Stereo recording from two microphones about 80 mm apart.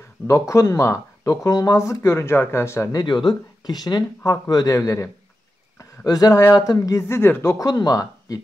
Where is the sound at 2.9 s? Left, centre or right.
Left.